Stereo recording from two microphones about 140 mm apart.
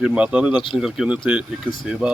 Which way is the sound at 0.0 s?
5° right (ahead or behind).